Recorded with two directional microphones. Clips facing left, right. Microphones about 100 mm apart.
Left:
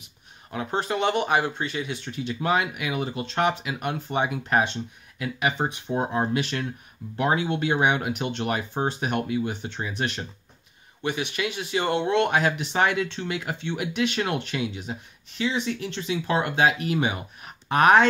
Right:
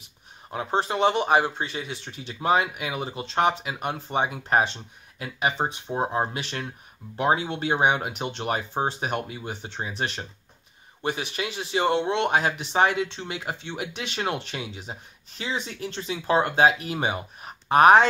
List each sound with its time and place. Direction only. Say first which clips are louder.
0.5 s speech: right 1 dB; 30° right (ahead or behind)